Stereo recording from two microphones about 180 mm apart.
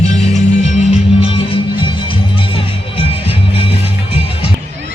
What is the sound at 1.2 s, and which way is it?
Music, 35° left (ahead or behind).